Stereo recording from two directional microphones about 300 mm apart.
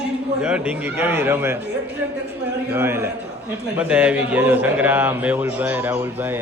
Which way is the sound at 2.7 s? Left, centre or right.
Centre.